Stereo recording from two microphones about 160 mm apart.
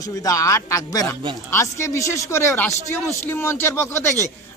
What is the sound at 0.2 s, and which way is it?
A man's voice, 20° left (ahead or behind).